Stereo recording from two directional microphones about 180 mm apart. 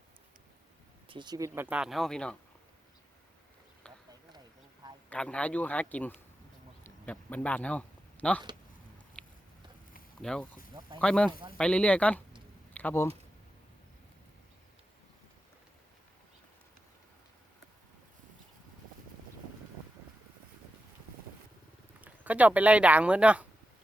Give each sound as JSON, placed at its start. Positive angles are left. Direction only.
{"t": 1.0, "sound": "speech", "side_deg": -25}
{"t": 3.9, "sound": "a sound", "side_deg": 5}
{"t": 5.0, "sound": "a man's voice", "side_deg": 5}
{"t": 6.8, "sound": "a sound", "side_deg": 10}
{"t": 9.2, "sound": "biting", "side_deg": 5}
{"t": 10.2, "sound": "speech", "side_deg": 5}
{"t": 10.8, "sound": "speech", "side_deg": -25}
{"t": 11.0, "sound": "a man's voice", "side_deg": 5}
{"t": 22.0, "sound": "speech", "side_deg": -10}